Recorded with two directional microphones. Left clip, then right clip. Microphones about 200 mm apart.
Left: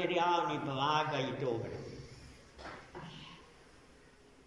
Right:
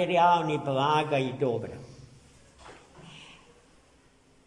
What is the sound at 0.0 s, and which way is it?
A man's voice, 60° right (ahead or behind).